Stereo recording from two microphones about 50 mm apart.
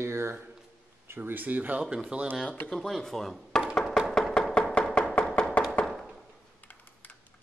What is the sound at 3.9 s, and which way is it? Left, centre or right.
Music, centre.